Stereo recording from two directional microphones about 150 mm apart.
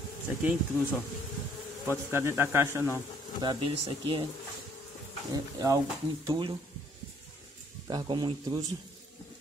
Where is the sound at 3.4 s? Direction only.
30° right (ahead or behind).